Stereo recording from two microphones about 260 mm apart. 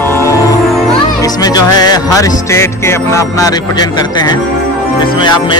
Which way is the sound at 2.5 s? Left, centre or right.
Centre.